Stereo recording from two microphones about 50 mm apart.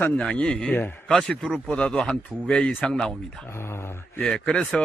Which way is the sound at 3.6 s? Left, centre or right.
Left.